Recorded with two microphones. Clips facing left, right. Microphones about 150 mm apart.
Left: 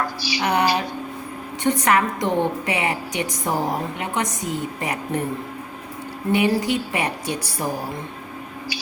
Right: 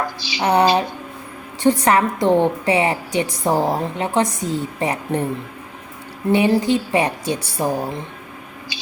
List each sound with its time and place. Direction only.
0.2 s a woman's voice: 20° right (ahead or behind)
6.3 s a woman's voice: 30° right (ahead or behind)
8.7 s a sound: 20° right (ahead or behind)